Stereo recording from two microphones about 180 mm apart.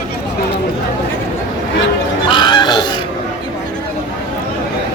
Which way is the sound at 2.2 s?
25° left (ahead or behind).